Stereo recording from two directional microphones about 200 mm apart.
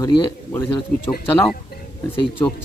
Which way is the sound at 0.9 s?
5° left (ahead or behind).